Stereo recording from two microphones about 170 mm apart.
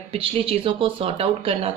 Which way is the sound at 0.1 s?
30° right (ahead or behind).